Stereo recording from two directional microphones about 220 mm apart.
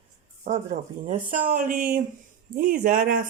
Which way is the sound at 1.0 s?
35° right (ahead or behind).